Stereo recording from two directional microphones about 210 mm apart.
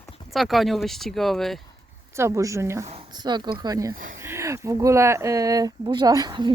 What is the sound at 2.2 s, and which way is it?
Speech, 15° right (ahead or behind).